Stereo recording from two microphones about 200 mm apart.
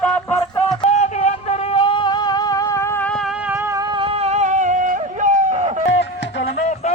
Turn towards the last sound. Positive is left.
turn(degrees=65)  # may be behind; listen again after turning